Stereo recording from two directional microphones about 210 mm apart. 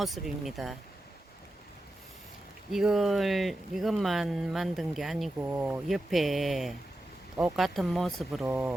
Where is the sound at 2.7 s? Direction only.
Centre (ahead or behind).